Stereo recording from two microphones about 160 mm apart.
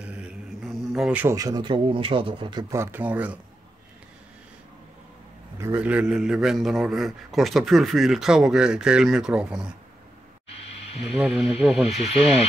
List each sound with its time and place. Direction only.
0.0 s mantra: 5° right (ahead or behind)
1.2 s speech: 20° right (ahead or behind)
2.7 s speech: 15° right (ahead or behind)
5.6 s a man's voice: 15° right (ahead or behind)
11.0 s a man's voice: centre (ahead or behind)
12.0 s speech: 40° left (ahead or behind)